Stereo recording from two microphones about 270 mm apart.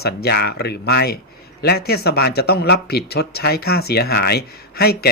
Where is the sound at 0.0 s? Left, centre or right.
Left.